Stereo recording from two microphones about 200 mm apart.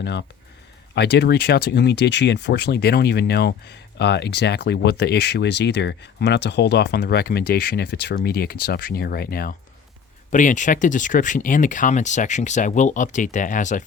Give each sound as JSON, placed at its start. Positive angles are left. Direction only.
{"t": 0.0, "sound": "speech", "side_deg": 60}